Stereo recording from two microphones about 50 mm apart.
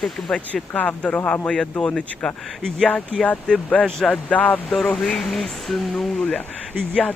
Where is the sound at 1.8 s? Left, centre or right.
Centre.